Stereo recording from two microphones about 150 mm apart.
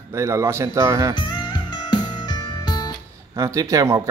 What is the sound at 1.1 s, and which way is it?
Music, 30° left (ahead or behind).